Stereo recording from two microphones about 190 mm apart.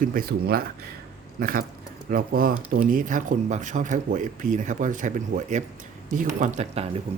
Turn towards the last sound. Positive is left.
turn(degrees=-35)  # may be behind; listen again after turning